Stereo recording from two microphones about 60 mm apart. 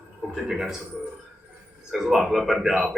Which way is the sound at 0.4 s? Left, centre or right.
Centre.